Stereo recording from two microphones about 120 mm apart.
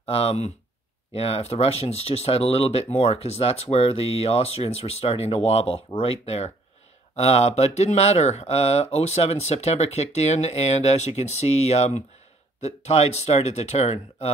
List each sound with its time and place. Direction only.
0.0 s speech: 55° left (ahead or behind)